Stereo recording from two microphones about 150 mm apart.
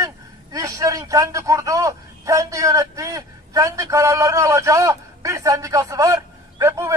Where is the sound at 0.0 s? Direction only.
20° right (ahead or behind).